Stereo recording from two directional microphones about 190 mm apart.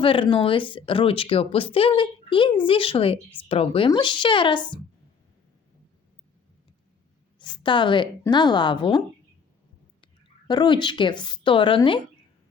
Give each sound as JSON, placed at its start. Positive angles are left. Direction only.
{"t": 0.0, "sound": "speech", "side_deg": 30}
{"t": 7.3, "sound": "a woman's voice", "side_deg": 25}